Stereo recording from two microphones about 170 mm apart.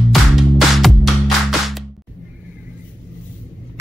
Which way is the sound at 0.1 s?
Centre (ahead or behind).